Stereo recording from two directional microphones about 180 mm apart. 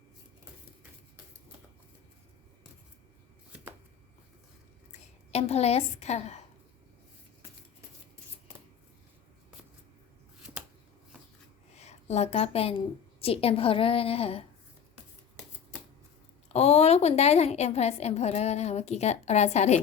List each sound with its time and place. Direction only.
4.9 s a woman's voice: 35° left (ahead or behind)
11.8 s a woman's voice: 40° left (ahead or behind)
16.5 s a woman's voice: 35° left (ahead or behind)